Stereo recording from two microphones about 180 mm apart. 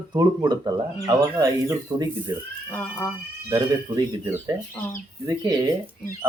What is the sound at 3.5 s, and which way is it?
Speech, 20° right (ahead or behind).